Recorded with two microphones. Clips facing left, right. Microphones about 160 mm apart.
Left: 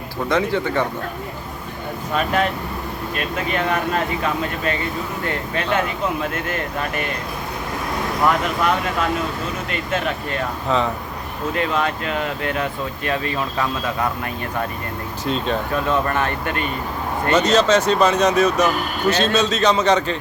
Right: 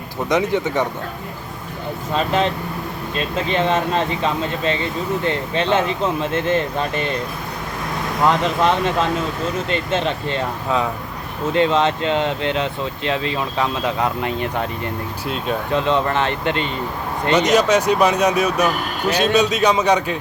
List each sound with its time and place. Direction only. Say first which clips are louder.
0.3 s speech: right 1 dB; 20° right (ahead or behind)
2.1 s speech: right 1 dB; 25° right (ahead or behind)
8.2 s speech: right 3 dB; 25° right (ahead or behind)
11.5 s speech: right 6 dB; 25° right (ahead or behind)
15.7 s speech: right 4 dB; 20° right (ahead or behind)